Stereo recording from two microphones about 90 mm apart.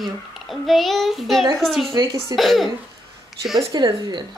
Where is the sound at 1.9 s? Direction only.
40° right (ahead or behind).